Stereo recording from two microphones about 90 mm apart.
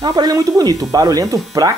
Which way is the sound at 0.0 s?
45° right (ahead or behind).